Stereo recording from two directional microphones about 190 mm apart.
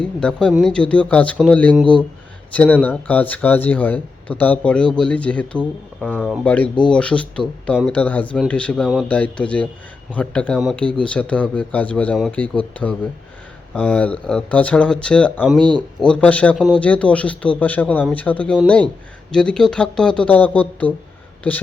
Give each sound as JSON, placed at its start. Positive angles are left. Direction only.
{"t": 0.0, "sound": "speech", "side_deg": 5}
{"t": 15.5, "sound": "speech", "side_deg": -25}
{"t": 16.0, "sound": "speech", "side_deg": 5}